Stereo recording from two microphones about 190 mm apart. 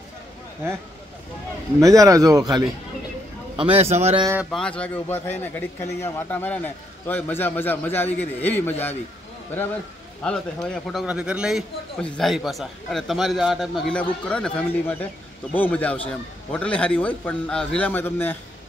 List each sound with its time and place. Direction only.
1.8 s a man's voice: 15° right (ahead or behind); by 4.3 s 30° right (ahead or behind)
4.5 s a man's voice: 5° left (ahead or behind)
10.2 s a man's voice: 5° left (ahead or behind)